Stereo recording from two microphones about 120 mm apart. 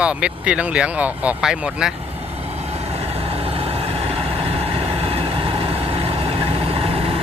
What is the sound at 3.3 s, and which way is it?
Vehicle, 55° right (ahead or behind).